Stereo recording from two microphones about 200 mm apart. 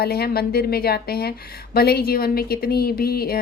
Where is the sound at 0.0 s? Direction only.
50° left (ahead or behind).